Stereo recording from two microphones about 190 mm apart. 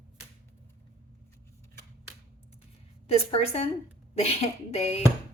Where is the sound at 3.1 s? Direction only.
30° left (ahead or behind).